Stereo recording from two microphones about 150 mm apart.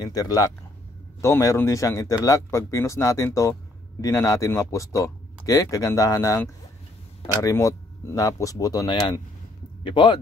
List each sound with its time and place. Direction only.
0.0 s speech: 25° left (ahead or behind)